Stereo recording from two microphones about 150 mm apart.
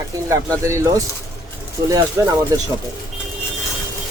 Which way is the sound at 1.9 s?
25° right (ahead or behind).